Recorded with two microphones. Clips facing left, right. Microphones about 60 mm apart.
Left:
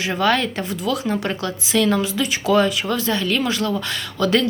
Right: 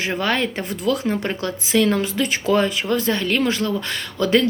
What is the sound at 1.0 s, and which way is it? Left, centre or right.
Speech, right.